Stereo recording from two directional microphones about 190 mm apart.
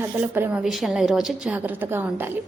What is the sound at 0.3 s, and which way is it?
A woman's voice, 10° right (ahead or behind).